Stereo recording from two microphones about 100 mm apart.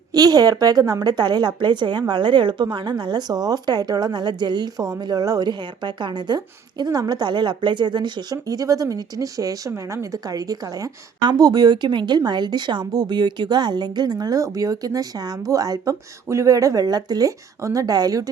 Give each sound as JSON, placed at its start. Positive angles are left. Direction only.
{"t": 0.1, "sound": "a woman's voice", "side_deg": -40}